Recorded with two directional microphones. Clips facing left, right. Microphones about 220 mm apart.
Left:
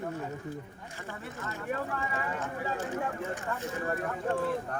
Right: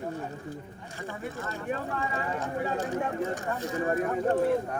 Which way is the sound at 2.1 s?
35° right (ahead or behind).